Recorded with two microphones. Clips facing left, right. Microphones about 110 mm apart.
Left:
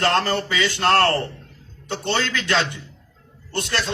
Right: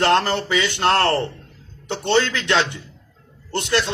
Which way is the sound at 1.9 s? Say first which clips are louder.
Right 4 dB; 25° right (ahead or behind).